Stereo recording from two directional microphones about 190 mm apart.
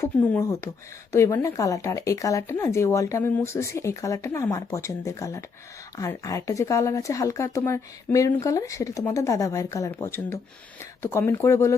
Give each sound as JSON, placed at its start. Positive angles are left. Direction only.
{"t": 0.0, "sound": "speech", "side_deg": 15}